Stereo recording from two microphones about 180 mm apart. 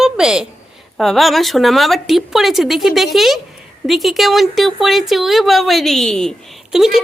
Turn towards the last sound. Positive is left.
turn(degrees=0)  # may be behind; listen again after turning